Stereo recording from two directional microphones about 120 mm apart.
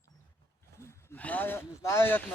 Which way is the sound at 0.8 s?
25° left (ahead or behind).